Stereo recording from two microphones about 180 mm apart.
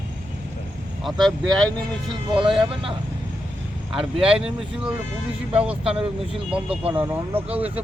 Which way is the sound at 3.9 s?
5° right (ahead or behind).